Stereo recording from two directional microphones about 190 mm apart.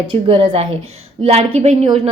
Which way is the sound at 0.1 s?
30° right (ahead or behind).